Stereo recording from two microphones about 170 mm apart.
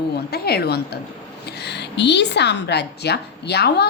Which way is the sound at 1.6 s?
85° left.